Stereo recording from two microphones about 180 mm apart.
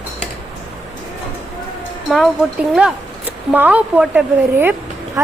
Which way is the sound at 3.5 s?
10° right (ahead or behind).